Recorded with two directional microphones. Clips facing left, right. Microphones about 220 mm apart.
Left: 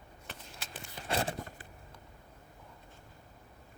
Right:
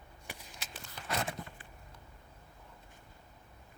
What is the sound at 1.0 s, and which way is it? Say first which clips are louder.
Biting: left 3 dB; 30° left (ahead or behind).